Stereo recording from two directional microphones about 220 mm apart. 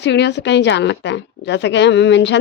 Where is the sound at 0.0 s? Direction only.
50° left (ahead or behind).